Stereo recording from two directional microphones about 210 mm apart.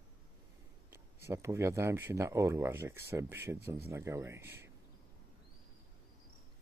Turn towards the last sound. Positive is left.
turn(degrees=-10)  # may be behind; listen again after turning